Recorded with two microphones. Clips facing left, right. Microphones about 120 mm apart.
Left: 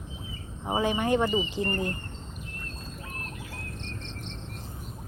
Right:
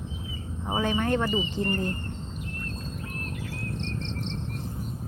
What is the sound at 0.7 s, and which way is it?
Speech, 10° left (ahead or behind).